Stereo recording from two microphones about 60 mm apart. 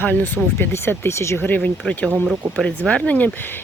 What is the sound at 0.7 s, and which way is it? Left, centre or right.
Speech, left.